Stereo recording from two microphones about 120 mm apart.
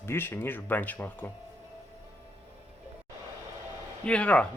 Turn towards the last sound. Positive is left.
turn(degrees=10)  # may be behind; listen again after turning